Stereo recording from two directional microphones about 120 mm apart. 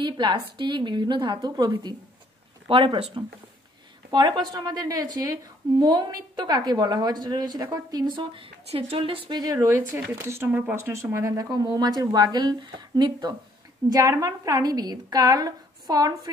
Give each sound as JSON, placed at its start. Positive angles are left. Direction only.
{"t": 0.0, "sound": "a woman's voice", "side_deg": -40}
{"t": 4.1, "sound": "a woman's voice", "side_deg": -40}
{"t": 8.6, "sound": "a woman's voice", "side_deg": -55}
{"t": 9.4, "sound": "a woman's voice", "side_deg": -30}
{"t": 9.7, "sound": "a woman's voice", "side_deg": -20}